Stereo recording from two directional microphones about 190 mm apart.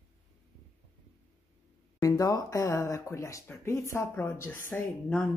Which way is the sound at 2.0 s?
20° left (ahead or behind).